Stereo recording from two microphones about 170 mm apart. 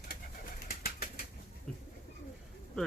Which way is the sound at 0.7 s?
60° left (ahead or behind).